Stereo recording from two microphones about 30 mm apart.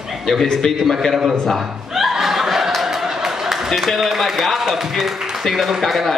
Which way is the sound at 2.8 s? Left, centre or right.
Centre.